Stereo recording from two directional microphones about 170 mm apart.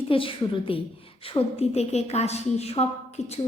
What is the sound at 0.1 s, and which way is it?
A woman's voice, 30° left (ahead or behind).